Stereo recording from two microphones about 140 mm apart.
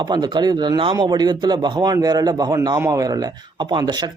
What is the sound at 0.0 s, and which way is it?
Speech, 30° right (ahead or behind).